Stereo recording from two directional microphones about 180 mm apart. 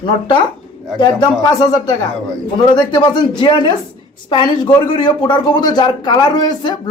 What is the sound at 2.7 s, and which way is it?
Speech, 25° left (ahead or behind).